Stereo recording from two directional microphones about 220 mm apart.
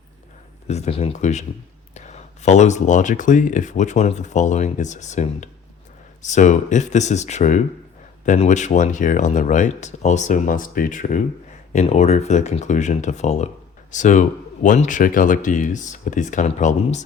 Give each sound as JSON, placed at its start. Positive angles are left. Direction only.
{"t": 0.7, "sound": "speech", "side_deg": 25}